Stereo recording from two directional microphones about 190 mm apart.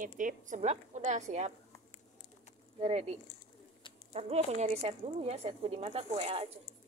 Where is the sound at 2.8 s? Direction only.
35° right (ahead or behind).